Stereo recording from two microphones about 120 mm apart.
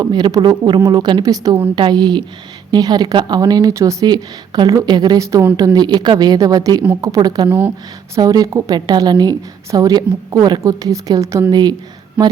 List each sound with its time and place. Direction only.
0.0 s a woman's voice: 35° right (ahead or behind)